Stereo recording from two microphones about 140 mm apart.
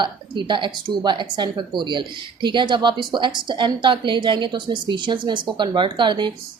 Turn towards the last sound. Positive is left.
turn(degrees=-35)  # may be behind; listen again after turning